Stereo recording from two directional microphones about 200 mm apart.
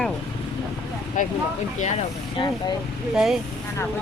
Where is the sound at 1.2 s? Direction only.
40° left (ahead or behind).